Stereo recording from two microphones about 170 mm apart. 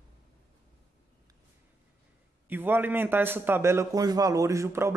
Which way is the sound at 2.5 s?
10° right (ahead or behind).